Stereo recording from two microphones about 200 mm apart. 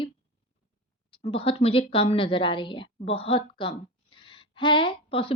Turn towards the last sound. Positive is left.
turn(degrees=25)  # may be behind; listen again after turning